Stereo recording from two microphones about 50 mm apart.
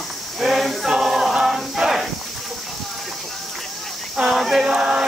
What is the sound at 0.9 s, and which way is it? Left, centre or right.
Choir, centre.